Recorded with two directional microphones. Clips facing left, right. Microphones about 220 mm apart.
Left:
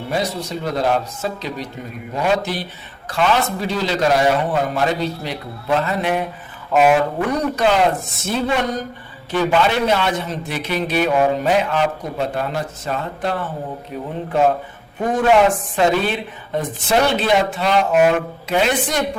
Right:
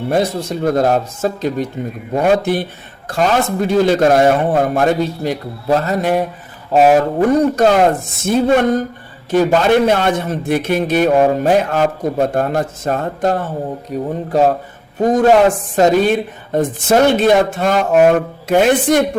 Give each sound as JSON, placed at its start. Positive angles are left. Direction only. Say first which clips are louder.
{"t": 0.1, "sound": "a man's voice", "louder": "right 5 dB", "side_deg": -50}